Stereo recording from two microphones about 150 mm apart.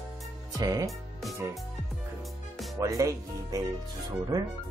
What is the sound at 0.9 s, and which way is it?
Music, centre (ahead or behind).